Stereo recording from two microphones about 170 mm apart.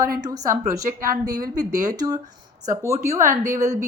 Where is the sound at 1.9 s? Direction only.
20° right (ahead or behind).